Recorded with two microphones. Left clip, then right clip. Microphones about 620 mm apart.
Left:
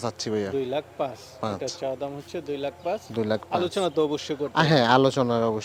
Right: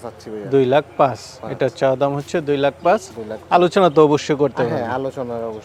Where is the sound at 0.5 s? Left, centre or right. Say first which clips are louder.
Right 13 dB; right.